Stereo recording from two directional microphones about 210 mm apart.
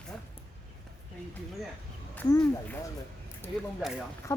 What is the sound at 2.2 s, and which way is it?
Speech, 15° left (ahead or behind).